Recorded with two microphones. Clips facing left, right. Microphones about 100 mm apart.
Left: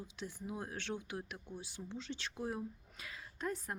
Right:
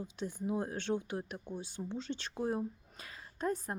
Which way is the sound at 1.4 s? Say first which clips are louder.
Right 6 dB; 50° right (ahead or behind).